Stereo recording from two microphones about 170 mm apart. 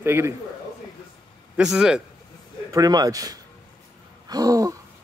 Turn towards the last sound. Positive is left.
turn(degrees=-20)  # may be behind; listen again after turning